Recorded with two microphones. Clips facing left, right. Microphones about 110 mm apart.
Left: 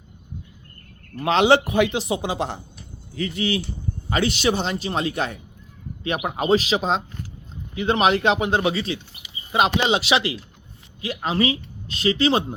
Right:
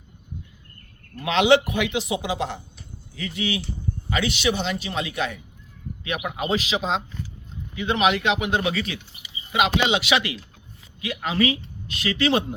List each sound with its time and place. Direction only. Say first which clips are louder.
1.2 s a man's voice: left 1 dB; 35° left (ahead or behind)